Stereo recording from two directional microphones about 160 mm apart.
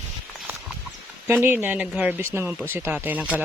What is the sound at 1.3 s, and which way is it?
Speech, 10° right (ahead or behind).